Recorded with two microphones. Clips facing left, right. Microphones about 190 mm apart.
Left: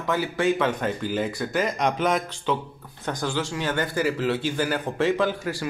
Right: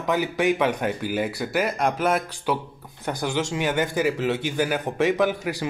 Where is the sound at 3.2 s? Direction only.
20° right (ahead or behind).